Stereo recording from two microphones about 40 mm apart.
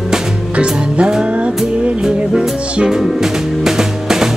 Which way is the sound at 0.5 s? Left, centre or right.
Right.